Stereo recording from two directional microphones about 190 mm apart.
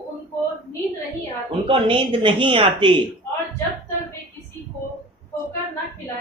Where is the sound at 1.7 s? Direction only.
25° right (ahead or behind).